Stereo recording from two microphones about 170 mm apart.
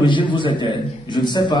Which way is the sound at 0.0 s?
30° left (ahead or behind).